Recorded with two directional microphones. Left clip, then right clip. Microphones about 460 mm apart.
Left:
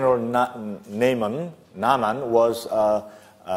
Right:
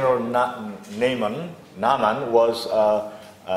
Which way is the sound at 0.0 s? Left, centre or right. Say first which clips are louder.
Even; left.